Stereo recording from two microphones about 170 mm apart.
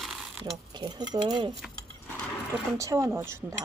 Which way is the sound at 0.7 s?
25° right (ahead or behind).